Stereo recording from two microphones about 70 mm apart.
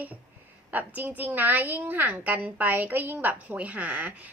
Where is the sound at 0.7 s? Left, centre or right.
Right.